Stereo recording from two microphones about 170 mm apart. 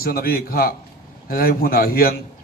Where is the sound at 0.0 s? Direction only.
60° left (ahead or behind).